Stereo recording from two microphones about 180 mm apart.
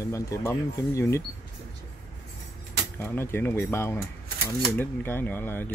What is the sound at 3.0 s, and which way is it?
Speech, 15° left (ahead or behind).